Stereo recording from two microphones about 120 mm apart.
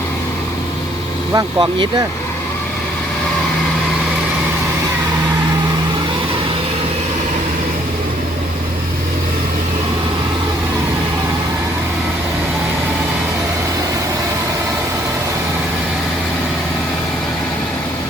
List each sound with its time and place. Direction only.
1.3 s speech: 30° right (ahead or behind)